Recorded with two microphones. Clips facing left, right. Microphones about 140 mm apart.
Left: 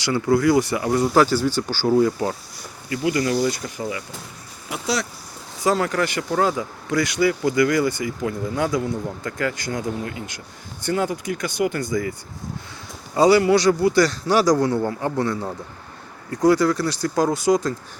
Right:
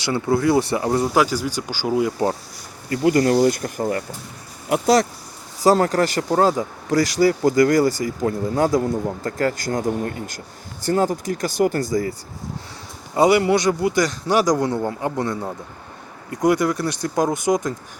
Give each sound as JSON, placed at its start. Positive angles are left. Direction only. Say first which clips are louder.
{"t": 0.0, "sound": "a man's voice", "louder": "left 1 dB", "side_deg": -25}
{"t": 1.1, "sound": "speech", "louder": "left 2 dB", "side_deg": -10}
{"t": 2.9, "sound": "speech", "louder": "right 5 dB", "side_deg": -45}
{"t": 13.1, "sound": "a man's voice", "louder": "left 1 dB", "side_deg": -20}